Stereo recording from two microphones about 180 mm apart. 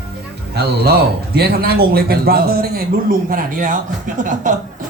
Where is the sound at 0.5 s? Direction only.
60° right (ahead or behind); by 4.5 s 45° right (ahead or behind).